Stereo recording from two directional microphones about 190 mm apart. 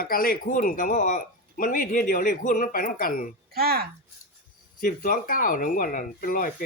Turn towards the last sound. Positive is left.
turn(degrees=45)  # may be behind; listen again after turning